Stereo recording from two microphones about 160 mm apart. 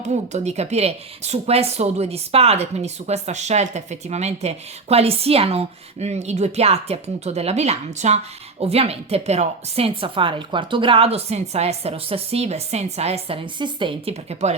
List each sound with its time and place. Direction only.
0.0 s speech: 45° right (ahead or behind)